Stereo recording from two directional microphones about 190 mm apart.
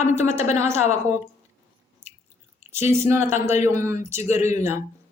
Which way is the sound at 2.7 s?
15° right (ahead or behind).